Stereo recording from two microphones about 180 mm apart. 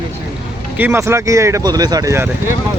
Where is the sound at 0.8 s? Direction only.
10° right (ahead or behind).